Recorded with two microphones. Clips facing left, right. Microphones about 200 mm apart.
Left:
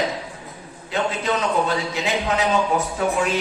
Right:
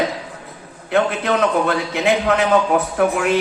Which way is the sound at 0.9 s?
60° right (ahead or behind).